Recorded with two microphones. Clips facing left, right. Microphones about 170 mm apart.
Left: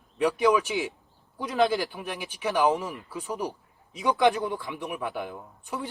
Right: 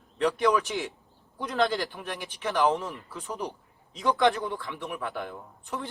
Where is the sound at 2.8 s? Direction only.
15° left (ahead or behind).